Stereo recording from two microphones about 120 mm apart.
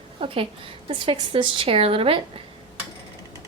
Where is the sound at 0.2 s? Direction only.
50° right (ahead or behind).